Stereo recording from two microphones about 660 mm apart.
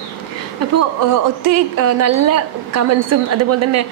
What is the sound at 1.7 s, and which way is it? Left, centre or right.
A woman's voice, right.